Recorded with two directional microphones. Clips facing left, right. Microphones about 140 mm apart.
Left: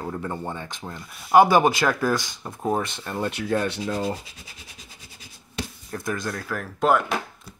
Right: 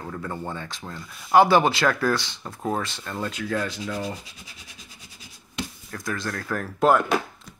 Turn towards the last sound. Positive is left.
turn(degrees=0)  # may be behind; listen again after turning